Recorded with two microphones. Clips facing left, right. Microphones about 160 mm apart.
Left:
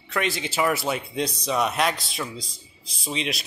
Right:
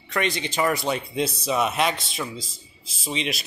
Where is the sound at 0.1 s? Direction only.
Centre (ahead or behind).